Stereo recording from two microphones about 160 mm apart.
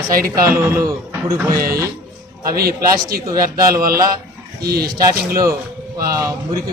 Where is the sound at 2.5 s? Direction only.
70° right (ahead or behind).